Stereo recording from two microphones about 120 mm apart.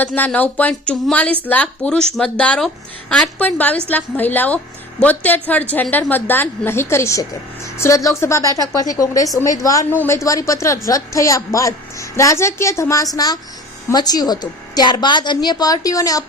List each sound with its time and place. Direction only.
0.3 s a woman's voice: 10° left (ahead or behind); by 16.2 s 30° left (ahead or behind)